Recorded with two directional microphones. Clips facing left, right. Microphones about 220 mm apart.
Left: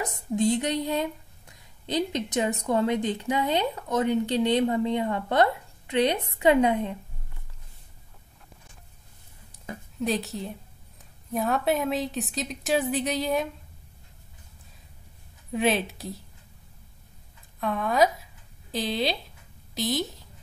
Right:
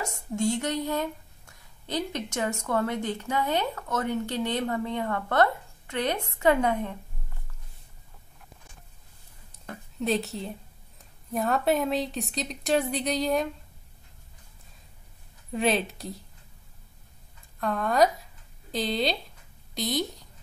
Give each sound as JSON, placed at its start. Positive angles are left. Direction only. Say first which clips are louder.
{"t": 0.0, "sound": "speech", "louder": "left 3 dB", "side_deg": 20}
{"t": 9.7, "sound": "a woman's voice", "louder": "even", "side_deg": 0}
{"t": 15.5, "sound": "a woman's voice", "louder": "left 1 dB", "side_deg": 0}
{"t": 17.6, "sound": "a woman's voice", "louder": "even", "side_deg": 0}